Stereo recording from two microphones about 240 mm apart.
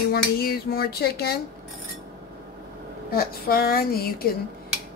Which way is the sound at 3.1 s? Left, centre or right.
Left.